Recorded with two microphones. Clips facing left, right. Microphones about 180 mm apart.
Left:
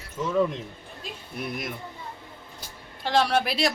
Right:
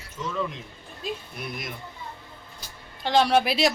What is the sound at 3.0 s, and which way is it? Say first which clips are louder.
Speech: right 2 dB; centre (ahead or behind).